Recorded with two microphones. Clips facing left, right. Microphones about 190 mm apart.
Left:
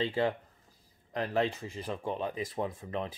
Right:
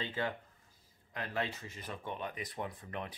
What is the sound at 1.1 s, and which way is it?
Speech, 35° left (ahead or behind).